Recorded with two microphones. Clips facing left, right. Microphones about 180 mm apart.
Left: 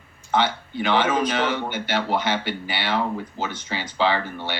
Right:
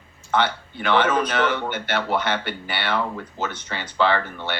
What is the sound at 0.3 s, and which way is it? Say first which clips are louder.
Speech: even; 55° right (ahead or behind).